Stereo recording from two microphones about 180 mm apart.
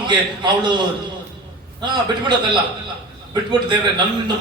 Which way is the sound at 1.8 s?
25° right (ahead or behind).